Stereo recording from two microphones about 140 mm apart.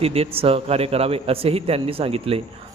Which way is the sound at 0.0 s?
45° right (ahead or behind).